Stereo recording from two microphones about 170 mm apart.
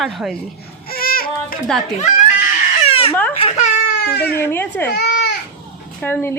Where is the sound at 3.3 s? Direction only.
35° left (ahead or behind).